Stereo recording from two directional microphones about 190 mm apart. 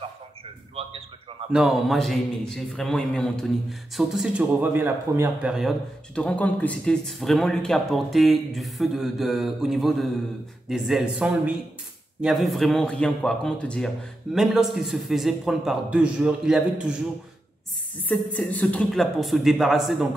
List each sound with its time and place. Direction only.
0.7 s a sound: 30° right (ahead or behind)
1.5 s a man's voice: centre (ahead or behind)
5.5 s a man's voice: centre (ahead or behind)
18.0 s a man's voice: 5° left (ahead or behind)